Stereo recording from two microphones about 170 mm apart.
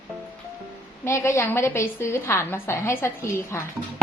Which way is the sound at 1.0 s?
15° left (ahead or behind).